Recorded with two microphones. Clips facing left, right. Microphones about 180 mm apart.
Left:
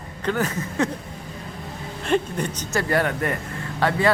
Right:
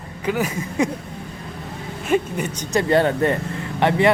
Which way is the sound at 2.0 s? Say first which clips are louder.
Right 2 dB; 5° right (ahead or behind).